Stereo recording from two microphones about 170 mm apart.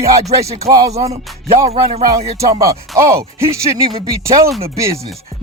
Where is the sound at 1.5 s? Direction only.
35° right (ahead or behind).